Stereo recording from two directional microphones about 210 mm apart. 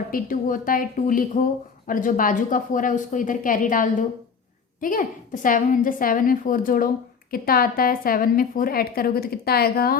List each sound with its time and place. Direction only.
0.1 s a woman's voice: 40° left (ahead or behind)